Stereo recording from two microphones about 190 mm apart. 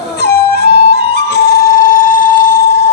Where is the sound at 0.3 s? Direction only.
55° left (ahead or behind).